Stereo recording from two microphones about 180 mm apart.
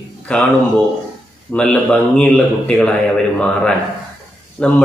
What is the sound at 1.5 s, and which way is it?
Speech, 5° left (ahead or behind).